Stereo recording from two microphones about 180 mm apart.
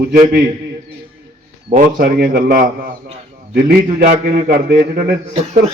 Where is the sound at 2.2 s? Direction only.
60° right (ahead or behind).